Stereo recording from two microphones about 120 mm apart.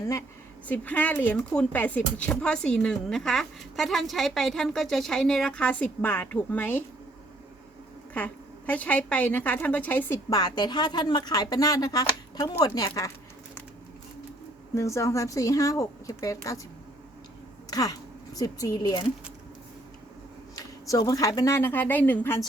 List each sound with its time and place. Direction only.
0.7 s a woman's voice: 15° left (ahead or behind)
8.1 s speech: 15° left (ahead or behind)
10.2 s speech: 30° left (ahead or behind)
14.8 s speech: 25° left (ahead or behind)
17.7 s a sound: 30° left (ahead or behind)
18.3 s speech: 30° left (ahead or behind)
20.6 s speech: 30° left (ahead or behind)